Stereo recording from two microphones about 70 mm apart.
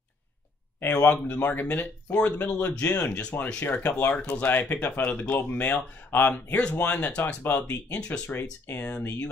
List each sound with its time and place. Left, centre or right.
0.9 s speech: centre
1.2 s speech: left
4.5 s speech: left
5.0 s speech: centre
5.3 s speech: left
8.3 s speech: left